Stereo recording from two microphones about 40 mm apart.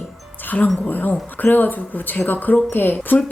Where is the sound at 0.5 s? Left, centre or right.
Left.